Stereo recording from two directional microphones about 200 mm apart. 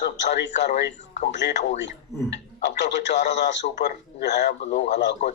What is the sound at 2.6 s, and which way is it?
Speech, 60° left (ahead or behind).